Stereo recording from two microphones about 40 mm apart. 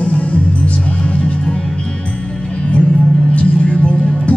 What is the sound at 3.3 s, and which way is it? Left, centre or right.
Music, left.